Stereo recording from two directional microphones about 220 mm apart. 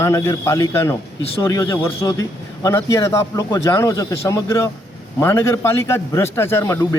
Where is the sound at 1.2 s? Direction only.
25° left (ahead or behind).